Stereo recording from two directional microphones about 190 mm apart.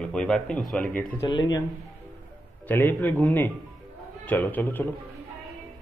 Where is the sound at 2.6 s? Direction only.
10° left (ahead or behind).